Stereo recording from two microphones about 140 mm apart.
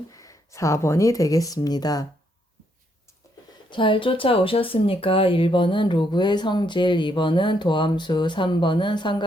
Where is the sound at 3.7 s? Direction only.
35° left (ahead or behind).